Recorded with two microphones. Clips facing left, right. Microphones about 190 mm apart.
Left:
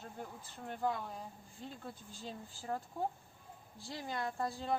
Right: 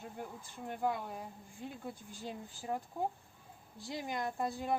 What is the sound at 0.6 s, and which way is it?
A woman's voice, 15° right (ahead or behind).